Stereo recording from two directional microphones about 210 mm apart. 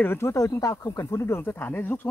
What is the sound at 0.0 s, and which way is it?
Speech, 10° left (ahead or behind).